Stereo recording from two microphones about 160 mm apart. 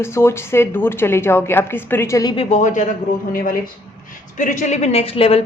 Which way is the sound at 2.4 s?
45° left (ahead or behind).